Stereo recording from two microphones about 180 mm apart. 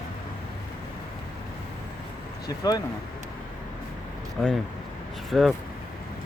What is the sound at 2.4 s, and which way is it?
Speech, 20° left (ahead or behind).